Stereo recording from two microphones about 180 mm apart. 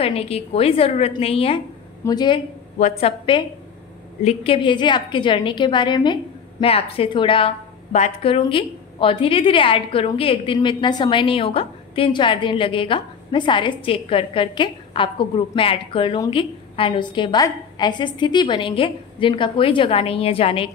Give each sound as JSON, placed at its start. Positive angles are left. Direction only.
{"t": 0.0, "sound": "a woman's voice", "side_deg": 35}